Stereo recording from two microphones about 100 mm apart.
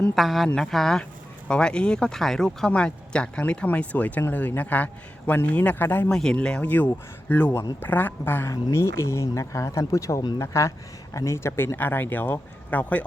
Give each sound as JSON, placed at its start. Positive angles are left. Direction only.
{"t": 0.2, "sound": "speech", "side_deg": 0}
{"t": 6.1, "sound": "speech", "side_deg": 5}
{"t": 10.2, "sound": "speech", "side_deg": 45}
{"t": 10.4, "sound": "speech", "side_deg": 30}